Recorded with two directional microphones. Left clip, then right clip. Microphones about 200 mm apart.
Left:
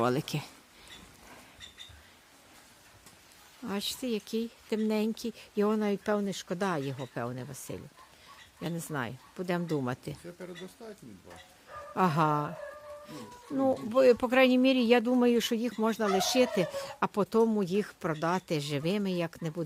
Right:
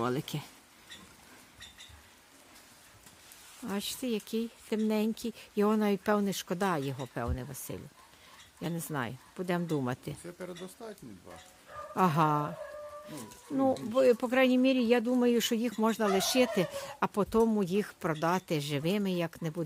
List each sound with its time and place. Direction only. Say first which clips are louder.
0.0 s speech: left 4 dB; 15° left (ahead or behind)
3.6 s speech: left 2 dB; centre (ahead or behind)
10.4 s speech: right 2 dB; 35° right (ahead or behind)
11.9 s speech: even; centre (ahead or behind)